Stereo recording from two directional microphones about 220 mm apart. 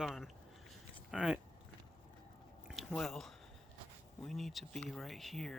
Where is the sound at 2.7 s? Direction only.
Centre (ahead or behind).